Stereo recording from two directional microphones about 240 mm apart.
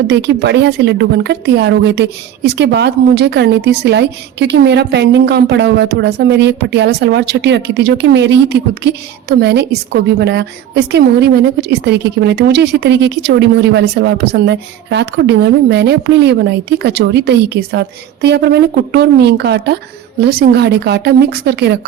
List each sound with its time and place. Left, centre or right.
0.1 s speech: right